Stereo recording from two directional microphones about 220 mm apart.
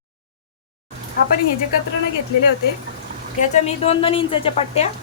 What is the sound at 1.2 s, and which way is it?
Speech, 45° left (ahead or behind).